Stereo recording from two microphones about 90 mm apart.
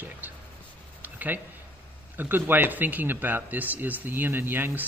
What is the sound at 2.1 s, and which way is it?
A man's voice, 20° right (ahead or behind).